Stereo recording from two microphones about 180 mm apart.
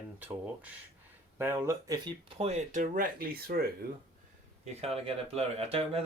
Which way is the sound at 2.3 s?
35° right (ahead or behind).